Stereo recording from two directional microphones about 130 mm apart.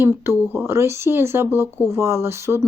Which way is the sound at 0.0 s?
20° right (ahead or behind).